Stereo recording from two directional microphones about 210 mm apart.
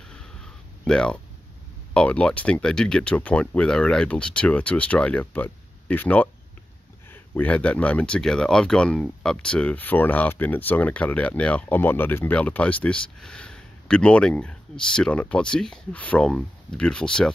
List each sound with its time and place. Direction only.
0.8 s speech: 5° left (ahead or behind)